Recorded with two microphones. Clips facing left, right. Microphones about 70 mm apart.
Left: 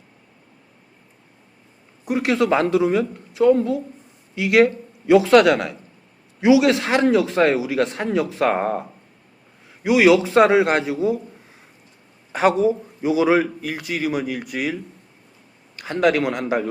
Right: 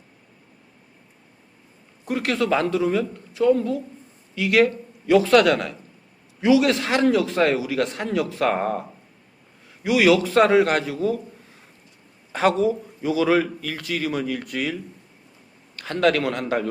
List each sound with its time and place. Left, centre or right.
2.0 s a man's voice: centre
9.8 s a man's voice: centre
12.3 s a man's voice: centre